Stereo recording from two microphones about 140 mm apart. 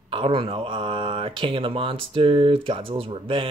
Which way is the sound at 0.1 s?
40° right (ahead or behind).